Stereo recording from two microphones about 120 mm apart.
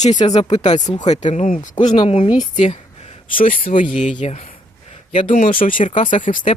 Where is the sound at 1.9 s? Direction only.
50° left (ahead or behind).